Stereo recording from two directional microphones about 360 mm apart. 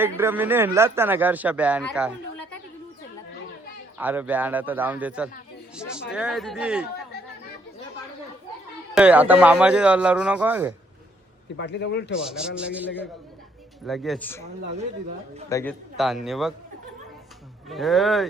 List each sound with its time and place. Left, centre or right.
0.0 s speech: centre
3.9 s speech: centre
9.0 s speech: centre
11.5 s a man's voice: left
12.2 s speech: centre
15.4 s speech: centre
17.7 s speech: centre